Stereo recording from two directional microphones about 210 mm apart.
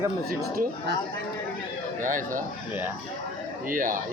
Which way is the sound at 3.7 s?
40° right (ahead or behind).